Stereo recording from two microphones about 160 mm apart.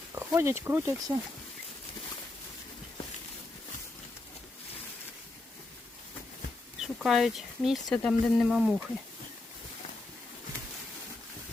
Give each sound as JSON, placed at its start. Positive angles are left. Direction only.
{"t": 0.1, "sound": "speech", "side_deg": -15}
{"t": 6.7, "sound": "speech", "side_deg": 0}